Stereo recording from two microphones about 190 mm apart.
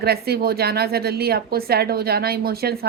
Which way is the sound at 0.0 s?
55° right (ahead or behind).